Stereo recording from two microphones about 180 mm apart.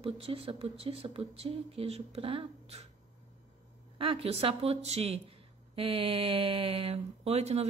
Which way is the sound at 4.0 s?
30° right (ahead or behind).